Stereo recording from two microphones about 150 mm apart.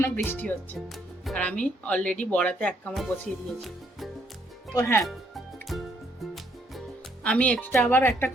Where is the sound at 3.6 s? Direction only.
Centre (ahead or behind).